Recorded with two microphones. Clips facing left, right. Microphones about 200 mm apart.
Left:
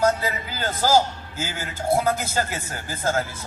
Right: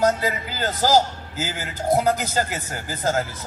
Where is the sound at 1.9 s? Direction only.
15° right (ahead or behind).